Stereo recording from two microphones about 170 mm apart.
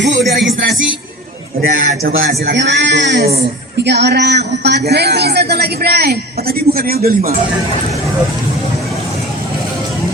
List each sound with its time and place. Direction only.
0.0 s music: 90° right
0.3 s speech: 90° right
1.8 s speech: 90° right; by 3.4 s 65° right (ahead or behind)
3.8 s speech: 80° right; by 7.3 s 60° right (ahead or behind)